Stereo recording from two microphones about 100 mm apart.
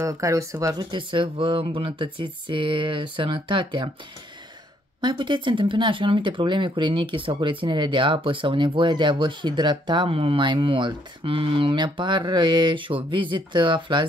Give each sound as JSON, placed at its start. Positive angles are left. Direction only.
{"t": 0.0, "sound": "speech", "side_deg": -35}
{"t": 0.9, "sound": "speech", "side_deg": -60}
{"t": 5.0, "sound": "speech", "side_deg": -55}